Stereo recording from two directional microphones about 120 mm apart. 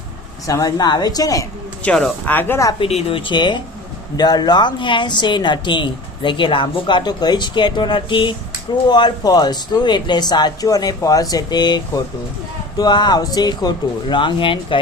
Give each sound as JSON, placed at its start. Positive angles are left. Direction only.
{"t": 0.4, "sound": "speech", "side_deg": 30}
{"t": 1.8, "sound": "speech", "side_deg": 10}
{"t": 2.8, "sound": "speech", "side_deg": 50}